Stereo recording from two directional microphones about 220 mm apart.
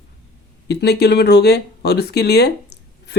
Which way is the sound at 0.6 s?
50° left (ahead or behind).